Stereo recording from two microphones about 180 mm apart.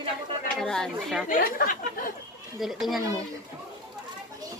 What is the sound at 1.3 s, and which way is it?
Speech, 55° left (ahead or behind).